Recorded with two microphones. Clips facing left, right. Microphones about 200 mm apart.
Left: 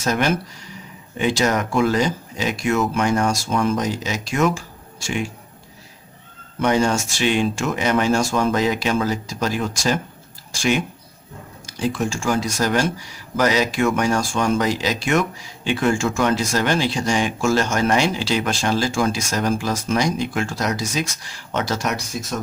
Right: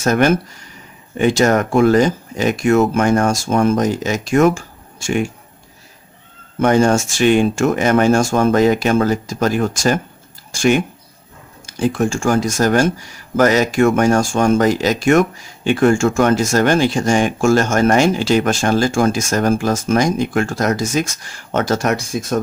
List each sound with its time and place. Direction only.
0.0 s speech: 50° right (ahead or behind)
6.6 s speech: 50° right (ahead or behind)